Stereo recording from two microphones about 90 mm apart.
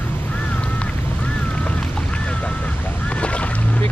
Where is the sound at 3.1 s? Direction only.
15° left (ahead or behind).